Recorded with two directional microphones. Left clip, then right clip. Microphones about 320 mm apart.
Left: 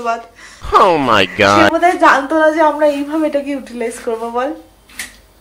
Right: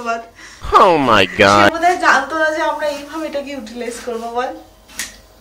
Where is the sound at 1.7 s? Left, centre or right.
Centre.